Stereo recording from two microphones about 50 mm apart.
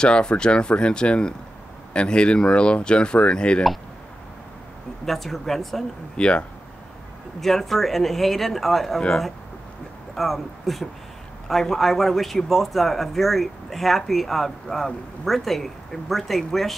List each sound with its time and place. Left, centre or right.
0.0 s speech: centre
5.0 s a man's voice: centre
6.1 s speech: left
7.3 s a man's voice: centre
10.1 s a man's voice: centre